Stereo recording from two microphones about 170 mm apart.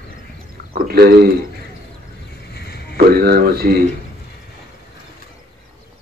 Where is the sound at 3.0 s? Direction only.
65° right (ahead or behind).